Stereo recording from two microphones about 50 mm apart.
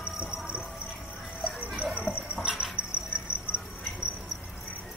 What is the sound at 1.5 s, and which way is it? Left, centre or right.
Dog, right.